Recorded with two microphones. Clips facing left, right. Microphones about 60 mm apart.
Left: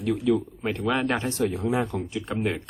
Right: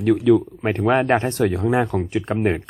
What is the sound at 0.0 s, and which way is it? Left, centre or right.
Speech, right.